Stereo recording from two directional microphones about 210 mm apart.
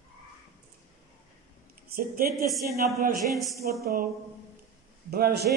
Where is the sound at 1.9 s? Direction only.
45° right (ahead or behind).